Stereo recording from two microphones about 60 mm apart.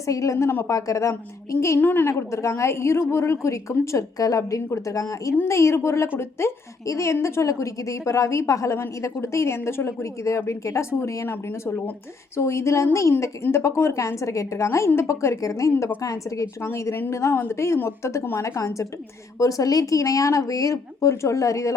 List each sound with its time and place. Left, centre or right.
0.0 s a woman's voice: left
0.7 s a woman's voice: left
1.8 s a woman's voice: left
2.0 s a woman's voice: left
5.5 s a woman's voice: left
11.3 s a woman's voice: left
12.4 s a woman's voice: left
15.4 s speech: left
16.6 s a woman's voice: left
19.4 s speech: left